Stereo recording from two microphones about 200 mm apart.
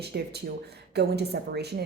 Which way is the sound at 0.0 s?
55° right (ahead or behind).